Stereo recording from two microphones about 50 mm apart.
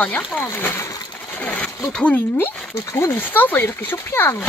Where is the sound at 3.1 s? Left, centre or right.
Left.